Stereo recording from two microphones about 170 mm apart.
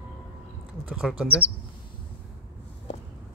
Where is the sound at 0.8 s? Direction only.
5° right (ahead or behind).